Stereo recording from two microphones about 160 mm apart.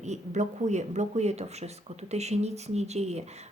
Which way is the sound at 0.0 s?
45° right (ahead or behind).